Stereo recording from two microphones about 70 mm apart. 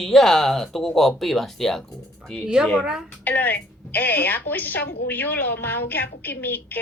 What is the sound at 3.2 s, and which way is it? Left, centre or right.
A woman's voice, left.